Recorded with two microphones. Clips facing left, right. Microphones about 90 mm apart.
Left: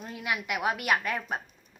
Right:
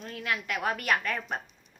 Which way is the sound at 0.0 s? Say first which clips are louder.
Even; 15° left (ahead or behind).